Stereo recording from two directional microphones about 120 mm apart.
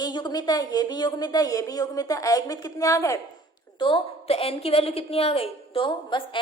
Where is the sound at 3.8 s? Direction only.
50° left (ahead or behind).